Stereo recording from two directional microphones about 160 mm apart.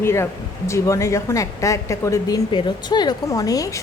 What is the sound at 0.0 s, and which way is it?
Speech, 15° left (ahead or behind).